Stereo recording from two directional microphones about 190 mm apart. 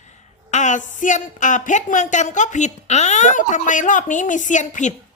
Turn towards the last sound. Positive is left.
turn(degrees=40)  # may be behind; listen again after turning